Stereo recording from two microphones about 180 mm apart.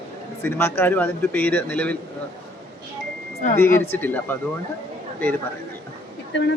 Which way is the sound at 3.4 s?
45° left (ahead or behind).